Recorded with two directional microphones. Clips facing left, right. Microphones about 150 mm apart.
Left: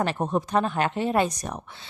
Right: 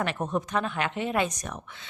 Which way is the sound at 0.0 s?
35° left (ahead or behind).